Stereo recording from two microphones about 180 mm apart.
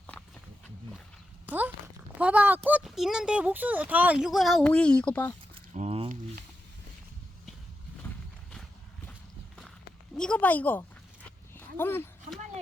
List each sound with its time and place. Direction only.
1.5 s a child's voice: 10° right (ahead or behind); by 5.3 s 10° left (ahead or behind)
5.7 s squish: 35° right (ahead or behind)
10.2 s speech: 5° left (ahead or behind)
11.5 s a sound: 10° left (ahead or behind)